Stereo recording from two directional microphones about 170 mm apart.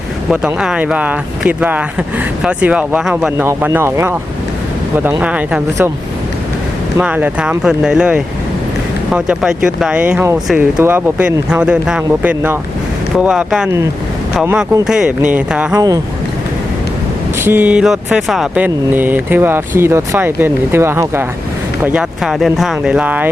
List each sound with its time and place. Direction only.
0.3 s speech: 5° right (ahead or behind)
3.4 s speech: 15° right (ahead or behind)
5.2 s speech: 5° right (ahead or behind)
7.0 s speech: 10° right (ahead or behind)
15.7 s speech: 20° right (ahead or behind)
17.4 s speech: 10° right (ahead or behind)
21.8 s speech: 5° right (ahead or behind)